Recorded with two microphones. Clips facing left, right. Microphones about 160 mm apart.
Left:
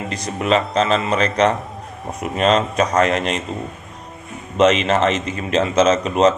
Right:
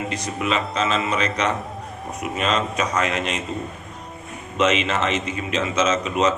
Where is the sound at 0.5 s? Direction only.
35° left (ahead or behind).